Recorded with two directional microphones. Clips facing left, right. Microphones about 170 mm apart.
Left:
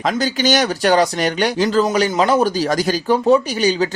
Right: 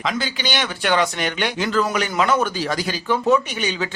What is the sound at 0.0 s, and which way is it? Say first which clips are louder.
Speech: left 7 dB; 45° left (ahead or behind).